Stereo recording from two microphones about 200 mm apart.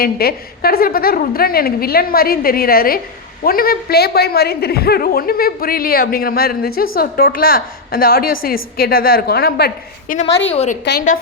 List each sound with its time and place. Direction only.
0.0 s a woman's voice: 50° left (ahead or behind)
10.5 s a woman's voice: 30° left (ahead or behind)
10.8 s a woman's voice: 60° left (ahead or behind)